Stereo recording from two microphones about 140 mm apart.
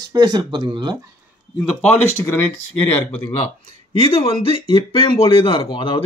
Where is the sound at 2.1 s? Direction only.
15° left (ahead or behind).